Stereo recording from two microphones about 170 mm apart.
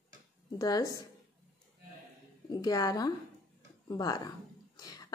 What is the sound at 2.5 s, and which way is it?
A woman's voice, 25° left (ahead or behind).